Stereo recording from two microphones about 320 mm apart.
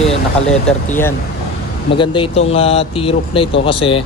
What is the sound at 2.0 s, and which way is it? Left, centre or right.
Speech, centre.